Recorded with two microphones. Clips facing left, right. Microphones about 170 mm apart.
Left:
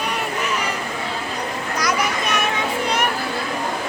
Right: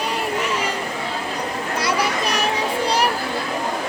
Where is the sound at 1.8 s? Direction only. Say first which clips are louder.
Even; 30° right (ahead or behind).